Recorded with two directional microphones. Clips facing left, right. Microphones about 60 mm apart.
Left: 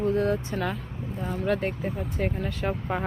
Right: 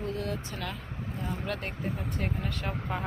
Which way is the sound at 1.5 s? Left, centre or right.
Centre.